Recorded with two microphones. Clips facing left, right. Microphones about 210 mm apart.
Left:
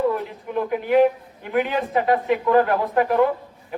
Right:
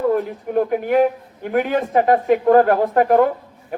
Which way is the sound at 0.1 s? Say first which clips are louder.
Right 6 dB; 50° right (ahead or behind).